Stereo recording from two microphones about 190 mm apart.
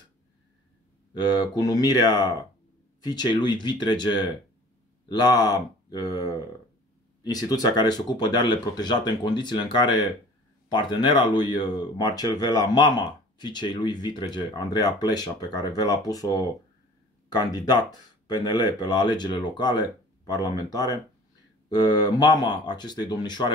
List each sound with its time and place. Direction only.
1.1 s speech: 20° left (ahead or behind)